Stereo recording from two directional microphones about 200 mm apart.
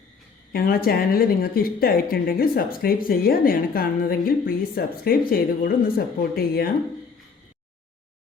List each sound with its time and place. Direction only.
0.5 s a woman's voice: 50° left (ahead or behind)